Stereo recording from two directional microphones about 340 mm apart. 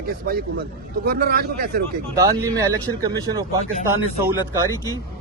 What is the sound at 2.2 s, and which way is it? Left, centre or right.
A man's voice, centre.